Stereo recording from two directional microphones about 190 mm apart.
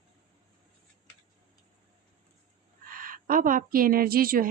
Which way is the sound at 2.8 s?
45° right (ahead or behind).